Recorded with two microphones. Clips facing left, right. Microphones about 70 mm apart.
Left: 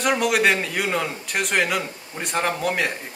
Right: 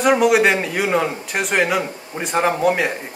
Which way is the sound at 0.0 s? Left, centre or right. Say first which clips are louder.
Right 5 dB; centre.